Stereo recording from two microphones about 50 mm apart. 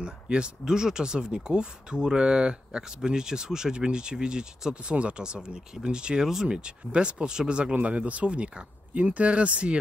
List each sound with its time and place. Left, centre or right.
0.0 s speech: centre